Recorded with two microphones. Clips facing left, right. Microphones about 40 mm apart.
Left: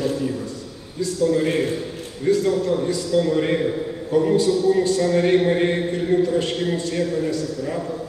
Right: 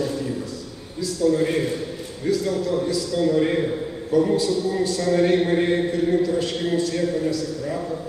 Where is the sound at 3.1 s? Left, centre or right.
Centre.